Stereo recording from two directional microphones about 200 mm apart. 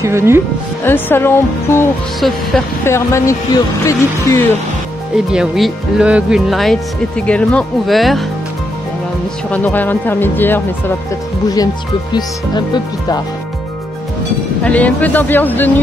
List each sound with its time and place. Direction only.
0.0 s speech: 15° right (ahead or behind)
0.8 s speech: 10° left (ahead or behind)
2.1 s speech: centre (ahead or behind)
2.8 s speech: 15° left (ahead or behind)
5.1 s speech: 5° right (ahead or behind)
9.5 s speech: 10° left (ahead or behind)
14.6 s speech: 5° left (ahead or behind)